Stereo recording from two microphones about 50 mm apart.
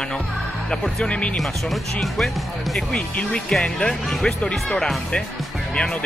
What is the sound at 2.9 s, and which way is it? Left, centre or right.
Speech, left.